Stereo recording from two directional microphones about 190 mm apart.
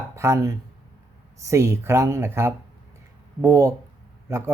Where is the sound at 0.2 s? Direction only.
15° right (ahead or behind).